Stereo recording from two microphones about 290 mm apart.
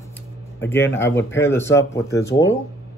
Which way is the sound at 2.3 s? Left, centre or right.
Left.